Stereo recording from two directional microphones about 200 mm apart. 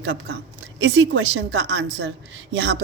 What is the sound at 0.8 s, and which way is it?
Speech, 65° right (ahead or behind).